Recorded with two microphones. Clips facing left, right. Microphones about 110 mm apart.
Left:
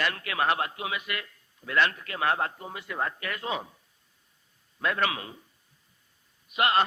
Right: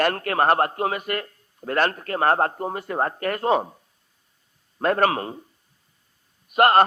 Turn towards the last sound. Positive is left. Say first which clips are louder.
# right 9 dB
turn(degrees=-50)  # may be behind; listen again after turning